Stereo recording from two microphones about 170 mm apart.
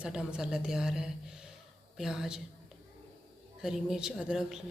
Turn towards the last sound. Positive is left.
turn(degrees=-5)  # may be behind; listen again after turning